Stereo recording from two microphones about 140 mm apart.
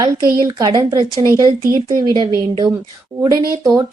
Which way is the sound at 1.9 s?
30° right (ahead or behind).